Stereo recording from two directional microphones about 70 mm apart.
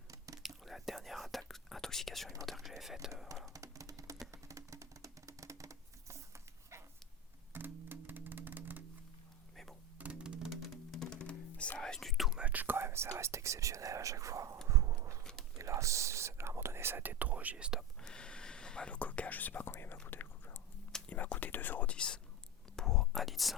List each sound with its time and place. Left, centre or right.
0.4 s whispering: centre
2.5 s speech: centre
3.5 s a sound: right
7.5 s music: right
10.0 s music: centre
11.0 s music: centre
11.8 s whispering: centre
12.4 s speech: right
14.7 s a sound: right
15.2 s a sound: centre
15.5 s whispering: right
18.0 s whispering: centre; by 20.6 s left
21.1 s speech: left
22.7 s whispering: centre